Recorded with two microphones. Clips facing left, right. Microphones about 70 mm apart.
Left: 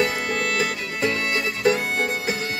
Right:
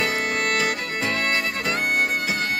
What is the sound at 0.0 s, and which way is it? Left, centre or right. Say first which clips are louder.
Music: left 1 dB; right.